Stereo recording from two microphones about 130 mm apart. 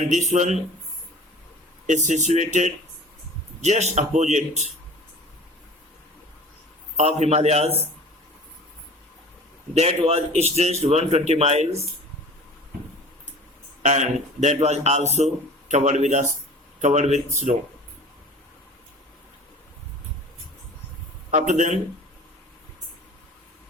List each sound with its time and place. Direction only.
0.1 s speech: 65° right (ahead or behind)
1.9 s speech: 70° right (ahead or behind)
6.9 s speech: 60° right (ahead or behind)
9.7 s speech: 55° right (ahead or behind)
13.8 s speech: 65° right (ahead or behind)
21.2 s speech: 70° right (ahead or behind)